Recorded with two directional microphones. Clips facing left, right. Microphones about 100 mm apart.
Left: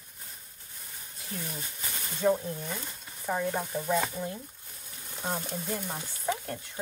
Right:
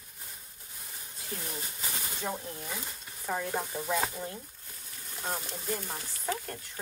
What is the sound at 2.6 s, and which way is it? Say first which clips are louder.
Speech: left 2 dB; 10° right (ahead or behind).